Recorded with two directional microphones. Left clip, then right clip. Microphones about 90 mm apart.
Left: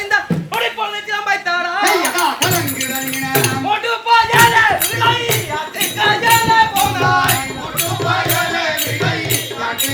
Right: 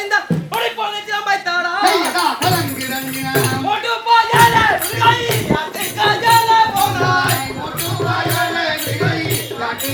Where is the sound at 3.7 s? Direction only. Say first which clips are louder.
Even; centre (ahead or behind).